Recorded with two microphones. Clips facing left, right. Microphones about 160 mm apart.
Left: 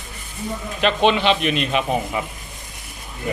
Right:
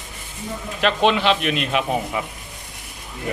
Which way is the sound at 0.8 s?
Centre (ahead or behind).